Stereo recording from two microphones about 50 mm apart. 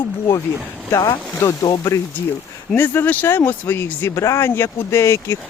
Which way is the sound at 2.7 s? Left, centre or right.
Left.